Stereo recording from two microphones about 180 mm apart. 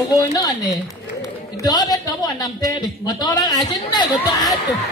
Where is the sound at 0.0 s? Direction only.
20° left (ahead or behind).